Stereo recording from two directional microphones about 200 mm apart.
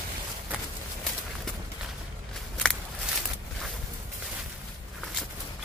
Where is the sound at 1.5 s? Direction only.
Centre (ahead or behind).